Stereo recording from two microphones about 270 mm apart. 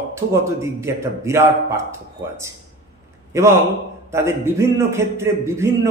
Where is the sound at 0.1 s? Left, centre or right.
Centre.